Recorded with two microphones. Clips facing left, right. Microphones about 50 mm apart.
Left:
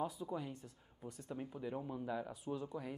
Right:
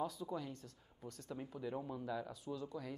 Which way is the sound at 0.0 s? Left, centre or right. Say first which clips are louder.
Left 1 dB; centre.